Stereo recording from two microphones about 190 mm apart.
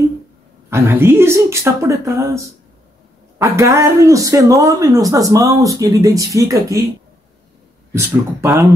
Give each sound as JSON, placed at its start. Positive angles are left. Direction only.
{"t": 0.7, "sound": "speech", "side_deg": -15}
{"t": 7.9, "sound": "speech", "side_deg": -15}